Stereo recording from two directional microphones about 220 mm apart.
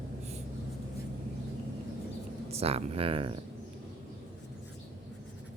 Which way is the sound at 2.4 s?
25° right (ahead or behind).